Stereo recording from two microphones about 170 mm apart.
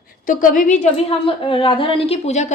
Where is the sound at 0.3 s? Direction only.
50° left (ahead or behind).